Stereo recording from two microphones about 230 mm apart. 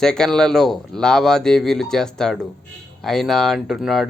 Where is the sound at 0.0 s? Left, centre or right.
Centre.